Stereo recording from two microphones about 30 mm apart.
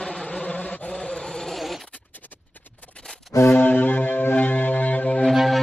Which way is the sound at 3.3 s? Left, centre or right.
Centre.